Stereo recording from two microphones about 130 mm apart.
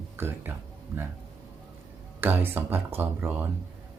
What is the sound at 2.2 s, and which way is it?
Speech, 15° right (ahead or behind).